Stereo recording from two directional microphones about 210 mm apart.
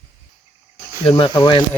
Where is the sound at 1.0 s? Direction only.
25° left (ahead or behind).